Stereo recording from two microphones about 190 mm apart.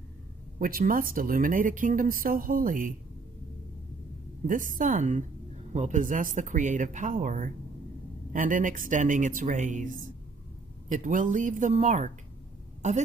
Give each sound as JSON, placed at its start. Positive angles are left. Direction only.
{"t": 0.6, "sound": "speech", "side_deg": -50}
{"t": 4.5, "sound": "speech", "side_deg": -45}